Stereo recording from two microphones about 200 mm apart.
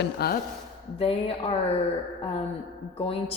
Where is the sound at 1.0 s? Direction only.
30° left (ahead or behind).